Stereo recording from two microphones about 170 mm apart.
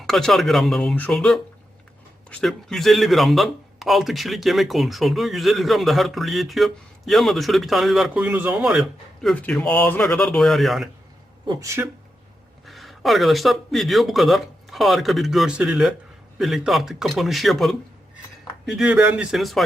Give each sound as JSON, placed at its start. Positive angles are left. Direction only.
{"t": 0.0, "sound": "a man's voice", "side_deg": 0}
{"t": 11.4, "sound": "speech", "side_deg": -20}
{"t": 12.6, "sound": "a man's voice", "side_deg": 0}